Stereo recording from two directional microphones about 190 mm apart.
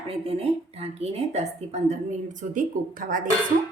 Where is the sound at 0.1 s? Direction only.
30° right (ahead or behind); by 3.2 s 45° right (ahead or behind).